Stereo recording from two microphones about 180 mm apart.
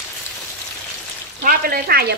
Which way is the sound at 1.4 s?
55° right (ahead or behind).